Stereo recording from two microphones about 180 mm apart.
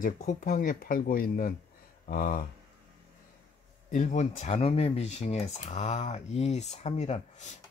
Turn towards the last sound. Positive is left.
turn(degrees=40)  # may be behind; listen again after turning